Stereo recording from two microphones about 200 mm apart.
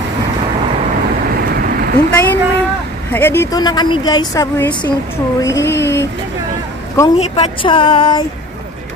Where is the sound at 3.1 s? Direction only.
10° left (ahead or behind).